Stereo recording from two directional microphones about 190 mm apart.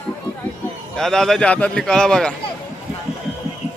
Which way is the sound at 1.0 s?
Centre (ahead or behind).